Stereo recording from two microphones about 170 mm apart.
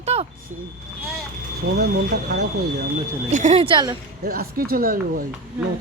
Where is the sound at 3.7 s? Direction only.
25° right (ahead or behind).